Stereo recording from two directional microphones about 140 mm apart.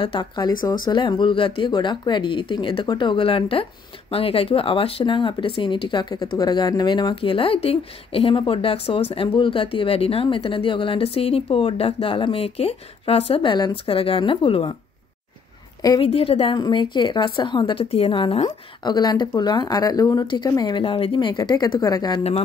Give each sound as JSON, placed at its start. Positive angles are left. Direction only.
{"t": 0.0, "sound": "speech", "side_deg": 35}
{"t": 16.0, "sound": "speech", "side_deg": 40}